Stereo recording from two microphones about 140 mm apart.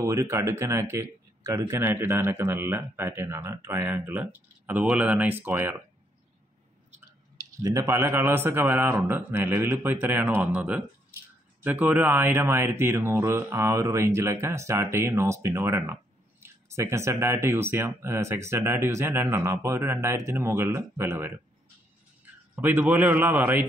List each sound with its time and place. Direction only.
0.0 s speech: 20° right (ahead or behind)
7.3 s speech: 25° right (ahead or behind)
22.6 s speech: 15° right (ahead or behind)